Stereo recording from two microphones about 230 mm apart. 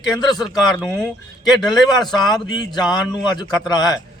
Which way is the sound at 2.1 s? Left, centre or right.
Centre.